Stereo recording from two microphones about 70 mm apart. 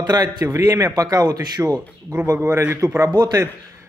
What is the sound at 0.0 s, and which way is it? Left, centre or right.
Speech, right.